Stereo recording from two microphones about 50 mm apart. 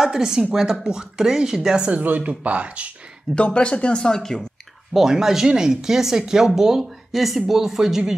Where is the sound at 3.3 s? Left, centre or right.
Left.